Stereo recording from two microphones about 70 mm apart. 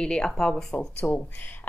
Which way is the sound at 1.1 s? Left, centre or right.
Left.